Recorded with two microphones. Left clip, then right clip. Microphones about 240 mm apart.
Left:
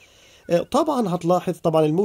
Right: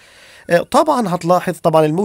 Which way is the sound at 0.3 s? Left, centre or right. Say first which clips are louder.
Right 7 dB; right.